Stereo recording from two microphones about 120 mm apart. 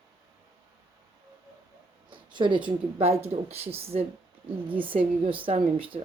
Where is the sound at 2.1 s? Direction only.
40° right (ahead or behind).